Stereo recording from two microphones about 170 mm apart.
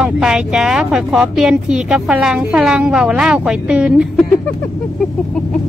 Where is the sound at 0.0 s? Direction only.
5° right (ahead or behind).